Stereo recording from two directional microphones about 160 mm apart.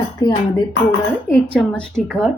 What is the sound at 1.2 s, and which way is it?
A woman's voice, 5° left (ahead or behind).